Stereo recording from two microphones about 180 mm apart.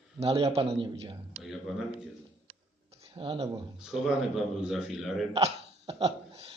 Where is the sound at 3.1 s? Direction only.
30° right (ahead or behind).